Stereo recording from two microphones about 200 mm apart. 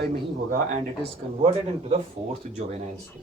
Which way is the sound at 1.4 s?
30° right (ahead or behind).